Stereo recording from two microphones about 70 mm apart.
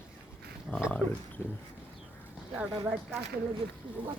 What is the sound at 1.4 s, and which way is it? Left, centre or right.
Speech, left.